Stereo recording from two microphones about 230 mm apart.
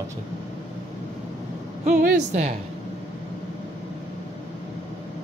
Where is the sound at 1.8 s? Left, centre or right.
Right.